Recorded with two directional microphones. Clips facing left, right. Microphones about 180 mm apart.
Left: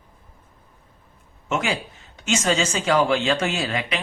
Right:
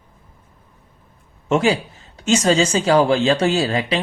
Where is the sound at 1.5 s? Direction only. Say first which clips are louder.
Right 8 dB; 35° right (ahead or behind).